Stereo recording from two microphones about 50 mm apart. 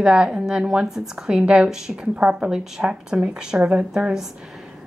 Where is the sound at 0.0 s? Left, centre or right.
Centre.